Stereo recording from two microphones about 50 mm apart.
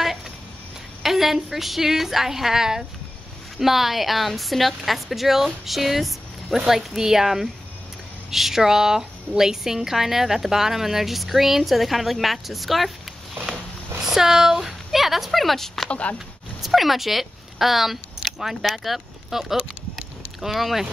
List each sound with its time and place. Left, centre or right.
1.0 s a woman's voice: centre
14.0 s speech: centre
15.9 s speech: left
16.6 s a woman's voice: centre